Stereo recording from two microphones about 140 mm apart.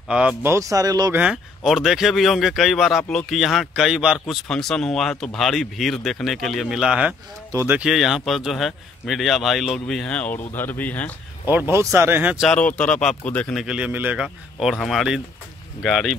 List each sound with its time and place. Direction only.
0.1 s speech: 5° right (ahead or behind)
0.4 s speech: 20° right (ahead or behind)
1.1 s speech: 5° right (ahead or behind)
7.8 s speech: centre (ahead or behind)
11.4 s speech: 15° right (ahead or behind)
12.4 s speech: 5° left (ahead or behind)
13.6 s speech: 5° right (ahead or behind)